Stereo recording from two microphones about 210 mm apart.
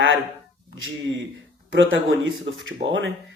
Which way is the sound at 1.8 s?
65° right (ahead or behind).